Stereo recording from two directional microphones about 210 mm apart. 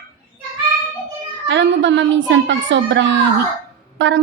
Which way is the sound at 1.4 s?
60° right (ahead or behind).